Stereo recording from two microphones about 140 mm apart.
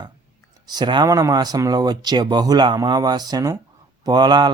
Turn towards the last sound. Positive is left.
turn(degrees=-30)  # may be behind; listen again after turning